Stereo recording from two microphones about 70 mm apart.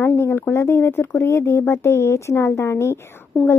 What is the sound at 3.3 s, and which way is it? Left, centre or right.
Speech, centre.